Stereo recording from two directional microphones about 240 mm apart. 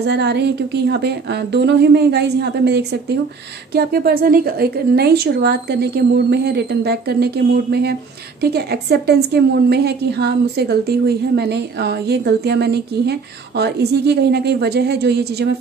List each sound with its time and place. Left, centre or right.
0.0 s a woman's voice: right